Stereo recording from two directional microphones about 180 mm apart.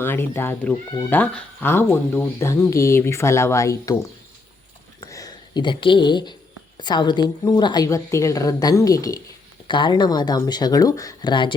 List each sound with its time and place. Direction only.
0.0 s speech: 10° left (ahead or behind)
4.9 s a sound: 20° left (ahead or behind)
6.7 s a woman's voice: 25° left (ahead or behind)